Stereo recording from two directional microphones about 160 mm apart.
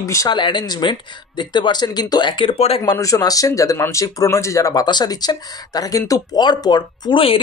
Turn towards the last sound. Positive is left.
turn(degrees=35)  # may be behind; listen again after turning